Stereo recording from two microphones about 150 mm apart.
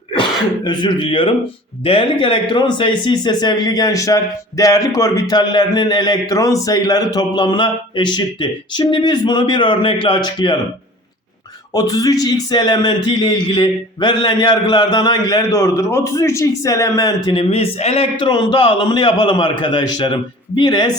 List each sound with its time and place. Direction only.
0.1 s a man's voice: 30° left (ahead or behind)
11.7 s a man's voice: 25° left (ahead or behind)
17.2 s a man's voice: 40° left (ahead or behind)